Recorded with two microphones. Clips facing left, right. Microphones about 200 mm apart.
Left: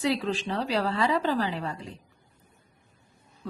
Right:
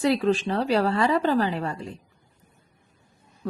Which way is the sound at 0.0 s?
50° right (ahead or behind).